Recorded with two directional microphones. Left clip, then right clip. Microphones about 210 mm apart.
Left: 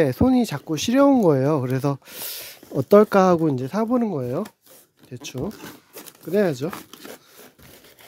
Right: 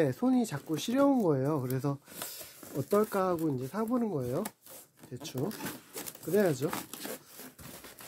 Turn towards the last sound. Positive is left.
turn(degrees=40)  # may be behind; listen again after turning